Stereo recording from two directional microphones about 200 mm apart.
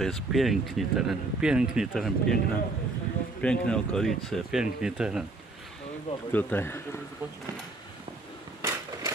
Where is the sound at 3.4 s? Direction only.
5° left (ahead or behind).